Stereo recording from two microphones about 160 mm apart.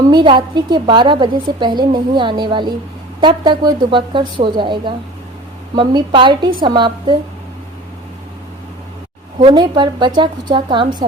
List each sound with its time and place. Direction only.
0.1 s a woman's voice: 30° right (ahead or behind)
9.4 s a woman's voice: 30° right (ahead or behind)